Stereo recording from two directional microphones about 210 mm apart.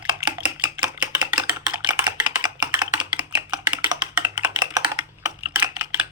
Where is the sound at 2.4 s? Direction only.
20° right (ahead or behind).